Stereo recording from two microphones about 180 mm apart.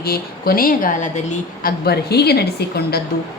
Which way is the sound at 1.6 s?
60° left (ahead or behind).